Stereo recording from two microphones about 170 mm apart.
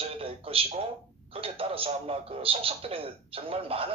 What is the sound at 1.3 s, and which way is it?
Speech, 35° right (ahead or behind).